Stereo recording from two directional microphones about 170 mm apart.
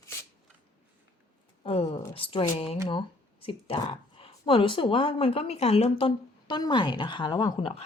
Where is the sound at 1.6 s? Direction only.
35° left (ahead or behind).